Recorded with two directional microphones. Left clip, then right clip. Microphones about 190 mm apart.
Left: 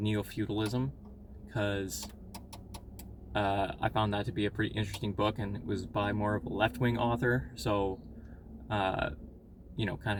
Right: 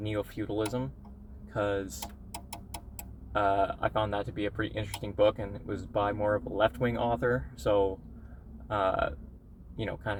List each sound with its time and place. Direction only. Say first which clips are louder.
0.0 s speech: right 1 dB; 15° left (ahead or behind)
3.3 s speech: right 4 dB; 15° left (ahead or behind)